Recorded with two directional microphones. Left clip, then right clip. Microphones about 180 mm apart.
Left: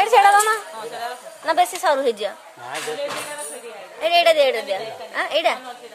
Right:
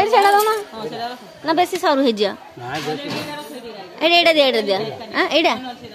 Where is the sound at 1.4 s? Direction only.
Centre (ahead or behind); by 2.7 s 15° right (ahead or behind).